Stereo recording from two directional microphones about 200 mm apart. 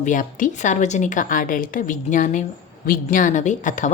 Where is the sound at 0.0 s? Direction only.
40° left (ahead or behind).